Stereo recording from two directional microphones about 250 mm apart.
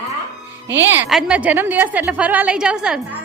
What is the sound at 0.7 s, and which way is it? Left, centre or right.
Speech, right.